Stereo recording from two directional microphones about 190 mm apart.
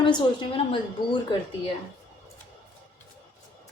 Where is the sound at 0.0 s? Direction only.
25° left (ahead or behind).